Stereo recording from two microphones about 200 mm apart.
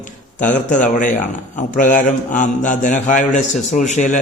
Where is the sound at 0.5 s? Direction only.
40° left (ahead or behind).